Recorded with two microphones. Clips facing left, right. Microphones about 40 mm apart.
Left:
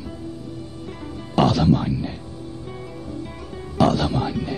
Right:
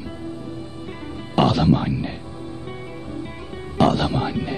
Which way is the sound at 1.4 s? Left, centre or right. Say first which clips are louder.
Even; right.